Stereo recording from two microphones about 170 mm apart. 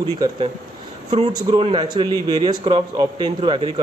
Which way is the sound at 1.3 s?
30° right (ahead or behind).